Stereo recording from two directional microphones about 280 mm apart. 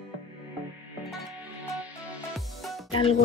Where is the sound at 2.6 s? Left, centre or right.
Centre.